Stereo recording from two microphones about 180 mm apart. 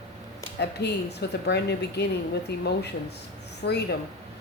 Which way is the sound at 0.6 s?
65° left (ahead or behind).